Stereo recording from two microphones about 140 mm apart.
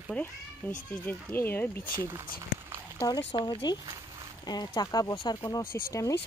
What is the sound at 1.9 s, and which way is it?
Speech, 20° right (ahead or behind).